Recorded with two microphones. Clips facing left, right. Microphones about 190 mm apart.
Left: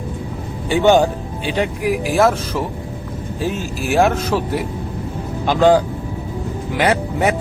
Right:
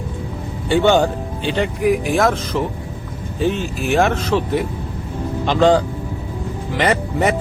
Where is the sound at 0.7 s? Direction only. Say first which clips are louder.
Left 1 dB; 10° left (ahead or behind).